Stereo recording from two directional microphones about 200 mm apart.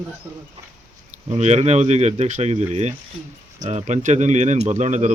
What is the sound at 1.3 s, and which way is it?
Speech, 35° right (ahead or behind).